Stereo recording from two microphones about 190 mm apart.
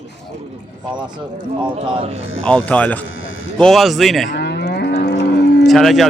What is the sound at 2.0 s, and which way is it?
Speech, 30° right (ahead or behind).